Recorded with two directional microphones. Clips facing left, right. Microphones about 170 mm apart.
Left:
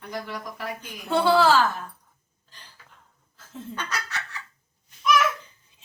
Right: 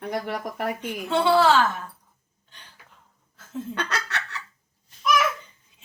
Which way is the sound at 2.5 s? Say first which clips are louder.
Even; centre (ahead or behind).